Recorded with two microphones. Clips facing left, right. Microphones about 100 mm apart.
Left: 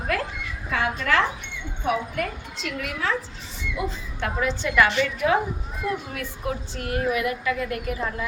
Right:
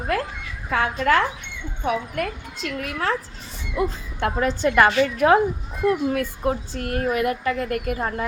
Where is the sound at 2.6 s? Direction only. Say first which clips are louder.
Right 2 dB; 45° right (ahead or behind).